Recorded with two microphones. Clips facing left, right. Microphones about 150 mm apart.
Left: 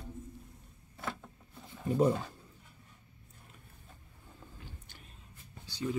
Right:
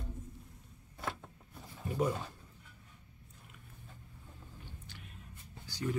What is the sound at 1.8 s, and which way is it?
Speech, 25° left (ahead or behind).